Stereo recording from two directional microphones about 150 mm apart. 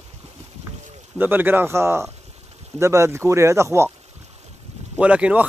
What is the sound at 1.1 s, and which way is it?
Speech, 15° right (ahead or behind).